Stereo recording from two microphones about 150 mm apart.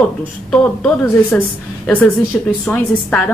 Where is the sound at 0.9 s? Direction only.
15° left (ahead or behind).